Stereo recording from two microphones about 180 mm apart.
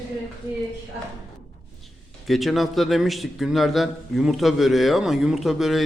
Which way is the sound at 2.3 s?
Centre (ahead or behind).